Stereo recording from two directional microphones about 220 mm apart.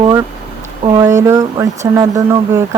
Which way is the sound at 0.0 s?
20° right (ahead or behind).